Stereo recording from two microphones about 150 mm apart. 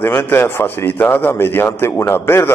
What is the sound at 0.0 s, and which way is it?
Speech, 15° left (ahead or behind).